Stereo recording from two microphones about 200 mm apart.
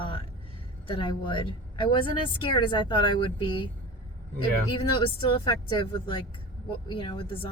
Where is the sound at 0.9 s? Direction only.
25° left (ahead or behind).